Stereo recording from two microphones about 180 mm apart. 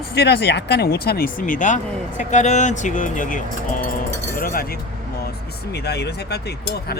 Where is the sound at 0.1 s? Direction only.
65° left (ahead or behind).